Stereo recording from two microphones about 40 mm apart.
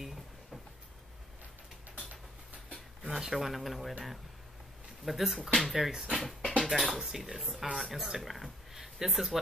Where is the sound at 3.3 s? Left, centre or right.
Centre.